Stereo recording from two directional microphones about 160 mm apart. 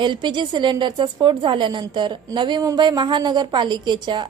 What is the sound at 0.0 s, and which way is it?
A woman's voice, 30° right (ahead or behind).